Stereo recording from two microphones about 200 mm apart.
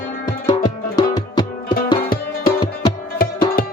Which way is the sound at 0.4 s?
20° left (ahead or behind).